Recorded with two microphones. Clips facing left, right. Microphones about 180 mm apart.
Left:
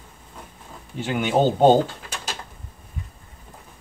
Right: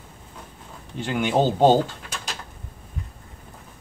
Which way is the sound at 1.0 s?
Centre (ahead or behind).